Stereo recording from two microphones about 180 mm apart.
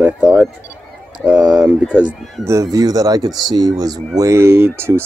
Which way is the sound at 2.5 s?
20° right (ahead or behind).